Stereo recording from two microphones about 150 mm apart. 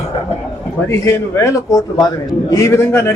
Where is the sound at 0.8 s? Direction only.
20° left (ahead or behind).